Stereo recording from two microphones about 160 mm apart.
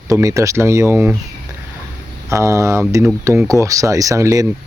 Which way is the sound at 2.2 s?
20° right (ahead or behind).